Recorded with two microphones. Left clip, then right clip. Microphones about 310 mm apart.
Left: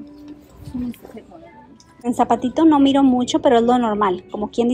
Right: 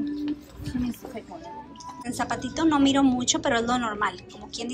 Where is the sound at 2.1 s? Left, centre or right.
Centre.